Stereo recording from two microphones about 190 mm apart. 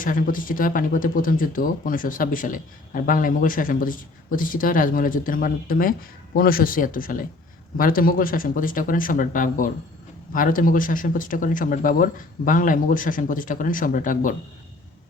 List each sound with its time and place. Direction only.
0.0 s speech: 45° left (ahead or behind)